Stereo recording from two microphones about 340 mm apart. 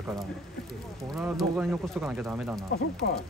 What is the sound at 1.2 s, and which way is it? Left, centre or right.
Speech, centre.